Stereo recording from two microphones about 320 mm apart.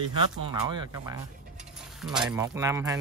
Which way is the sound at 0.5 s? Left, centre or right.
Centre.